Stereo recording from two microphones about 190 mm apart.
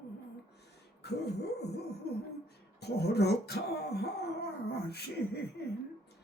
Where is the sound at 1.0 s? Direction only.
60° left (ahead or behind).